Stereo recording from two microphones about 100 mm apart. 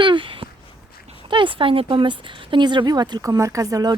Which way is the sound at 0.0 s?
55° right (ahead or behind).